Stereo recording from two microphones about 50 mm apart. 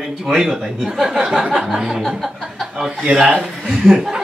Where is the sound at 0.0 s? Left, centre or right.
Centre.